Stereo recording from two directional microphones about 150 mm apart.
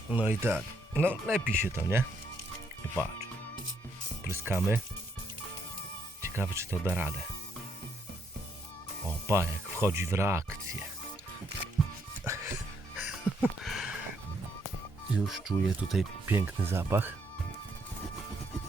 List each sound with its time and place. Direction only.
0.1 s speech: 10° right (ahead or behind)
4.2 s speech: 15° right (ahead or behind)
6.2 s speech: 15° right (ahead or behind)
9.2 s speech: 15° right (ahead or behind)
12.2 s music: 15° right (ahead or behind)
13.0 s a sound: 10° right (ahead or behind)
15.1 s speech: centre (ahead or behind)
16.2 s speech: 15° right (ahead or behind)